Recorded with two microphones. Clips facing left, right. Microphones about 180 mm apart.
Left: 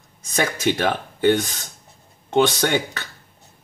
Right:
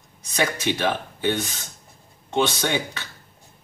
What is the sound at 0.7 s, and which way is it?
Speech, 50° left (ahead or behind).